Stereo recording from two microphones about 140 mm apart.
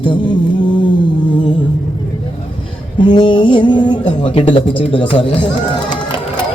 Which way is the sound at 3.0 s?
35° left (ahead or behind).